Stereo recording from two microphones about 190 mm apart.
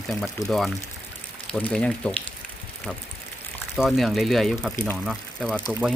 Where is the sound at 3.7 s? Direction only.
Centre (ahead or behind).